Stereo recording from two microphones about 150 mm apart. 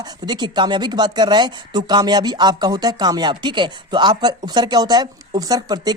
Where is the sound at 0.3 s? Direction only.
30° right (ahead or behind).